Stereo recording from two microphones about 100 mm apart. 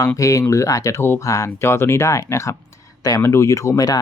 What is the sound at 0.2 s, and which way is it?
Speech, 30° left (ahead or behind).